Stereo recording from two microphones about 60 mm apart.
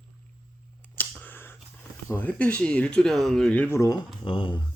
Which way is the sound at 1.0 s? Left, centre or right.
Left.